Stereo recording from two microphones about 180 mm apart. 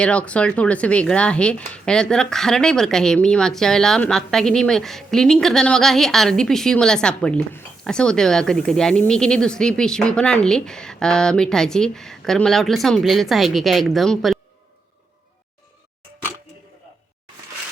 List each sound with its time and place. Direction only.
0.0 s speech: 5° left (ahead or behind)